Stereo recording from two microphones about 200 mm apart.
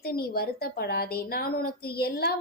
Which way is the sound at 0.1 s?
50° left (ahead or behind).